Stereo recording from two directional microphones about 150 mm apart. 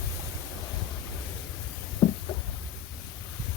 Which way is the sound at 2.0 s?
25° left (ahead or behind).